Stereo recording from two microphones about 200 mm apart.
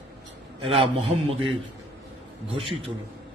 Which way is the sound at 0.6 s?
30° right (ahead or behind).